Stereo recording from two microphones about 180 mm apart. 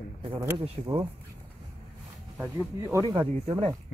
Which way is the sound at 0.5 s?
30° right (ahead or behind).